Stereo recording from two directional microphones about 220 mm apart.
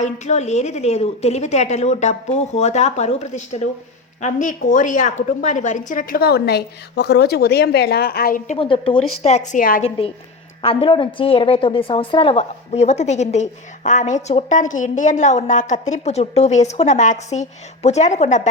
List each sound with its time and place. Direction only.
0.0 s a woman's voice: 30° left (ahead or behind)
8.5 s a woman's voice: 25° left (ahead or behind)
10.6 s a woman's voice: 25° left (ahead or behind)